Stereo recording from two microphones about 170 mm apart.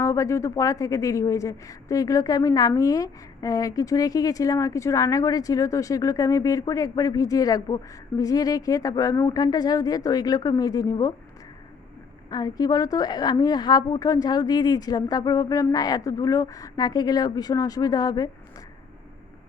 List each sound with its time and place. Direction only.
0.0 s speech: 15° left (ahead or behind)
12.3 s speech: 25° left (ahead or behind)